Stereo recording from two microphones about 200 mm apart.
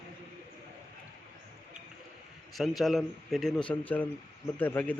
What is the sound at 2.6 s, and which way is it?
Speech, centre (ahead or behind).